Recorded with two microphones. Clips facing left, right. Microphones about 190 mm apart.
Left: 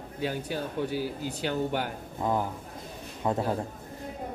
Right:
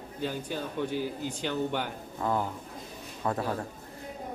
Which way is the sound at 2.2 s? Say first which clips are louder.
Left 1 dB; 15° left (ahead or behind).